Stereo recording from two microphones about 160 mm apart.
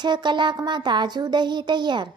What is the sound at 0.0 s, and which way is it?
Child singing, 30° right (ahead or behind).